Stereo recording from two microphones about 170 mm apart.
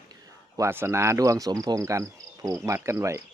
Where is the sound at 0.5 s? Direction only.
15° right (ahead or behind).